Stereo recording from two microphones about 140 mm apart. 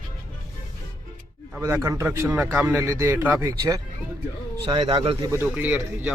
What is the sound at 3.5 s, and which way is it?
A man's voice, 25° right (ahead or behind).